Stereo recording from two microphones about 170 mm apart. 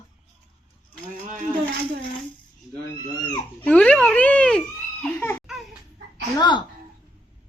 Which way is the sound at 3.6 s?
5° left (ahead or behind).